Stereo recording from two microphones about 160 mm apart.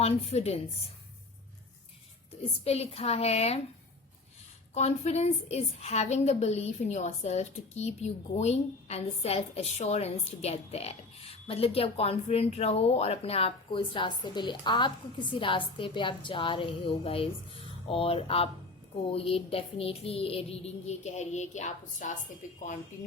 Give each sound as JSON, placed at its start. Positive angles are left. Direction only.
{"t": 0.0, "sound": "a woman's voice", "side_deg": 40}
{"t": 2.6, "sound": "a woman's voice", "side_deg": 40}
{"t": 4.7, "sound": "a woman's voice", "side_deg": 40}